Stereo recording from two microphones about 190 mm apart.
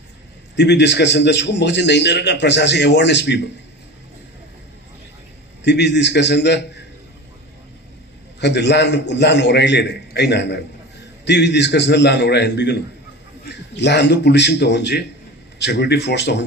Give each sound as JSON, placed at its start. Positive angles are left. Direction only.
{"t": 0.5, "sound": "a man's voice", "side_deg": 65}
{"t": 5.6, "sound": "a man's voice", "side_deg": 65}
{"t": 8.4, "sound": "a man's voice", "side_deg": 65}